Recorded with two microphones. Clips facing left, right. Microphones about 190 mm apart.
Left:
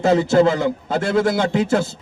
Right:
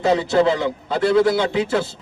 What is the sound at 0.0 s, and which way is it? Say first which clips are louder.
A man's voice: left 2 dB; 45° left (ahead or behind).